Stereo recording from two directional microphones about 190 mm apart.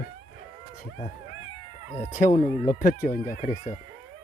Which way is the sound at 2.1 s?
40° left (ahead or behind).